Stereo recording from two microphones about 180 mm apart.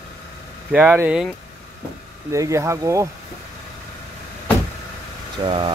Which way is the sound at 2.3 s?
15° right (ahead or behind).